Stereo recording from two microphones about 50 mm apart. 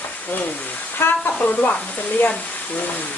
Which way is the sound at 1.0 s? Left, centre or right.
Left.